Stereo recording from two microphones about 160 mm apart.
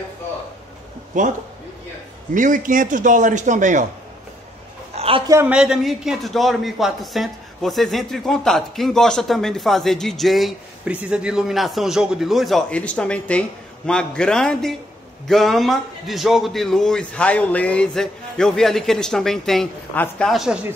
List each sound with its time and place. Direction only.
1.1 s a man's voice: 50° right (ahead or behind)
2.3 s a man's voice: 55° right (ahead or behind)
4.9 s a sound: 35° right (ahead or behind)
5.2 s a man's voice: 20° right (ahead or behind)
5.5 s a man's voice: 5° right (ahead or behind)